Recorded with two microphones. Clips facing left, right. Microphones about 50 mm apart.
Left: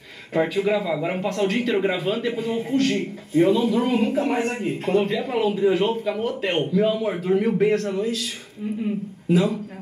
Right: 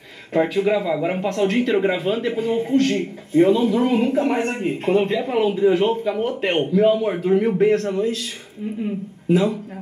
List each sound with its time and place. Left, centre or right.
0.3 s a man's voice: centre
4.5 s speech: right; by 7.8 s centre